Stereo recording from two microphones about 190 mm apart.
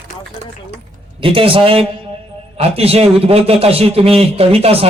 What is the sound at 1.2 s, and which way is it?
A man's voice, 30° right (ahead or behind).